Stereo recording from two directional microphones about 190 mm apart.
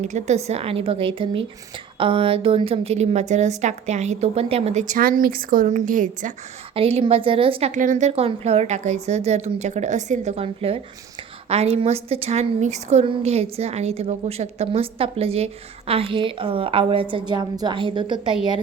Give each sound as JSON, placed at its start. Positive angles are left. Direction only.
{"t": 0.0, "sound": "a woman's voice", "side_deg": -40}
{"t": 6.7, "sound": "a woman's voice", "side_deg": -30}